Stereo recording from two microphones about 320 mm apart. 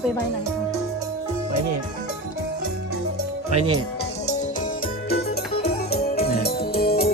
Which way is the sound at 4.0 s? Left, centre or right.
Left.